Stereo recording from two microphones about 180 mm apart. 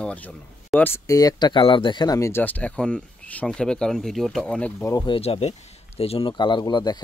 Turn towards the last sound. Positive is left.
turn(degrees=25)  # may be behind; listen again after turning